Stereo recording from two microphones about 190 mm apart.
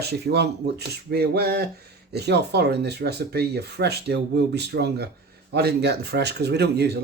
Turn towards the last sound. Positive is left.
turn(degrees=-60)  # may be behind; listen again after turning